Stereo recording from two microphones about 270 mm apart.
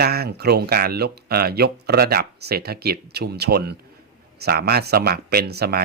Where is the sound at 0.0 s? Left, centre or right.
Right.